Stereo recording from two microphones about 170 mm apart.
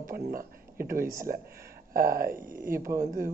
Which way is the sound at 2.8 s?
20° right (ahead or behind).